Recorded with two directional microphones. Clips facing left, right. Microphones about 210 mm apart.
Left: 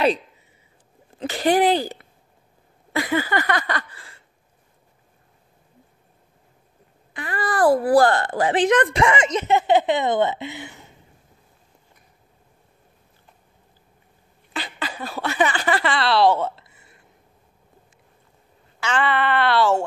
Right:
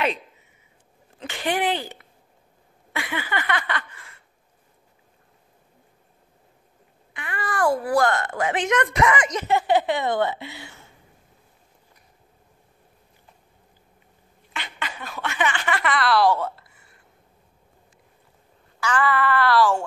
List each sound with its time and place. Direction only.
1.2 s a sound: 35° left (ahead or behind)
7.2 s speech: 35° left (ahead or behind); by 11.0 s 20° left (ahead or behind)
14.5 s speech: 35° left (ahead or behind)
18.8 s speech: 25° left (ahead or behind)